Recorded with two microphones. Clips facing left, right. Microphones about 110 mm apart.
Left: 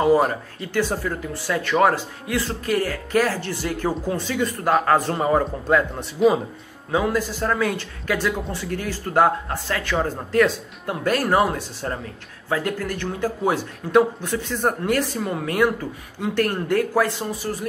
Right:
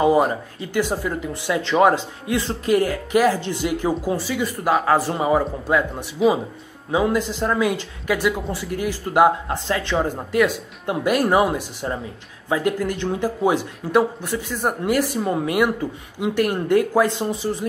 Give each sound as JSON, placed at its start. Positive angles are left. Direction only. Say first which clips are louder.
{"t": 0.7, "sound": "a man's voice", "louder": "right 1 dB", "side_deg": -15}
{"t": 6.9, "sound": "a man's voice", "louder": "right 2 dB", "side_deg": -20}